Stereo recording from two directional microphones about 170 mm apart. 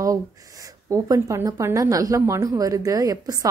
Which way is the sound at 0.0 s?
20° right (ahead or behind).